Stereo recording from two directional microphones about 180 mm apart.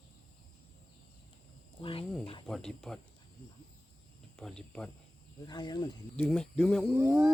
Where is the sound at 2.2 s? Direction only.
30° left (ahead or behind).